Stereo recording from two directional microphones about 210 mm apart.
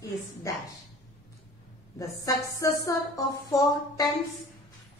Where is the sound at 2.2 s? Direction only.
15° left (ahead or behind).